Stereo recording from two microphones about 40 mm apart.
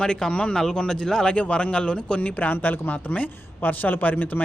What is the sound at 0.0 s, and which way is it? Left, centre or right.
Speech, left.